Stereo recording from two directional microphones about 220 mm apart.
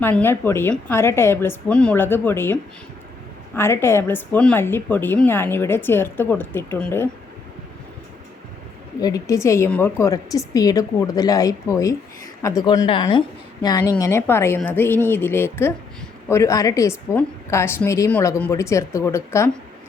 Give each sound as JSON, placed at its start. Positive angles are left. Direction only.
{"t": 0.0, "sound": "a woman's voice", "side_deg": 10}
{"t": 9.0, "sound": "a woman's voice", "side_deg": 15}